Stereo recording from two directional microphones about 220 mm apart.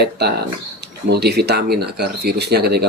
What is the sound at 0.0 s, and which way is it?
Speech, 50° right (ahead or behind).